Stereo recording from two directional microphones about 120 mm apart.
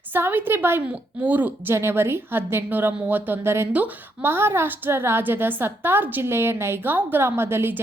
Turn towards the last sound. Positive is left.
turn(degrees=-20)  # may be behind; listen again after turning